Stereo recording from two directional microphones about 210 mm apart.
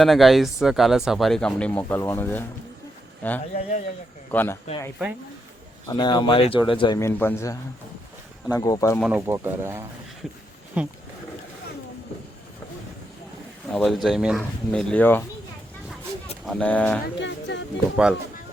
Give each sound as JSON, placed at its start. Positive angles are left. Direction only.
{"t": 0.0, "sound": "speech", "side_deg": 0}
{"t": 3.5, "sound": "a man's voice", "side_deg": 35}
{"t": 4.3, "sound": "speech", "side_deg": 10}
{"t": 5.8, "sound": "a man's voice", "side_deg": 20}
{"t": 9.0, "sound": "speech", "side_deg": -5}
{"t": 13.7, "sound": "speech", "side_deg": 0}
{"t": 16.5, "sound": "speech", "side_deg": 5}
{"t": 17.2, "sound": "speech", "side_deg": 55}
{"t": 17.9, "sound": "speech", "side_deg": -5}